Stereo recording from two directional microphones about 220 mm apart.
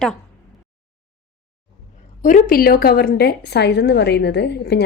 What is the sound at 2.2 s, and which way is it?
A woman's voice, 40° left (ahead or behind).